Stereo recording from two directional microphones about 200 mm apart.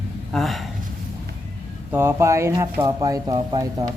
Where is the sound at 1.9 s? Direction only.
10° right (ahead or behind).